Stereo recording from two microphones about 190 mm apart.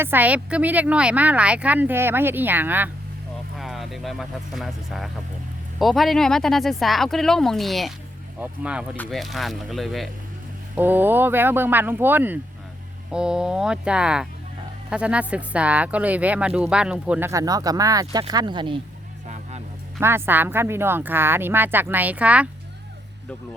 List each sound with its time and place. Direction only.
0.0 s speech: 10° right (ahead or behind)
10.8 s speech: 10° right (ahead or behind)
19.3 s music: 35° right (ahead or behind)
20.0 s speech: 10° right (ahead or behind)